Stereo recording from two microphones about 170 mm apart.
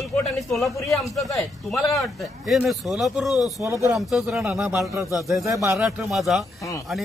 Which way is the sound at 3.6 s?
20° right (ahead or behind).